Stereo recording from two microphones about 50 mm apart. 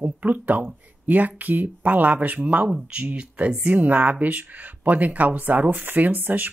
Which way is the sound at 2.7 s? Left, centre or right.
Right.